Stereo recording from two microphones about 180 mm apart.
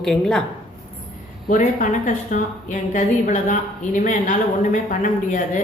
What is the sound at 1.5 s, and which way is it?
A woman's voice, 45° left (ahead or behind).